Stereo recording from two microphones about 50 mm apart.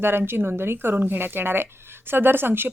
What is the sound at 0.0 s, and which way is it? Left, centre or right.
Speech, right.